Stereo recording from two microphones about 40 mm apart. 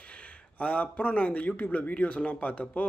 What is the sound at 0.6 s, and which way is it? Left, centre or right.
A man's voice, left.